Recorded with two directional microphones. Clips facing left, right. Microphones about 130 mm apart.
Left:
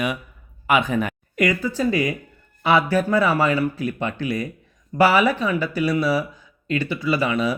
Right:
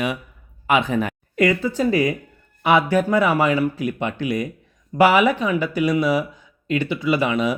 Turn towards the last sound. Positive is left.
turn(degrees=-20)  # may be behind; listen again after turning